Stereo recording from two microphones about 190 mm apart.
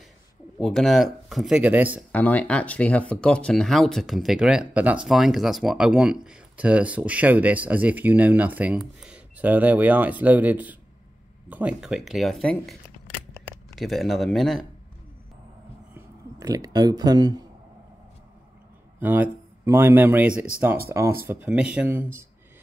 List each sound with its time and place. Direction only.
0.6 s speech: centre (ahead or behind)
2.1 s speech: 5° left (ahead or behind)
15.9 s a sound: 20° right (ahead or behind)
18.9 s speech: 10° right (ahead or behind)